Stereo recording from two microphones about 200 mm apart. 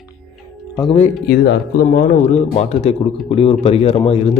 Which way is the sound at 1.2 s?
55° left (ahead or behind).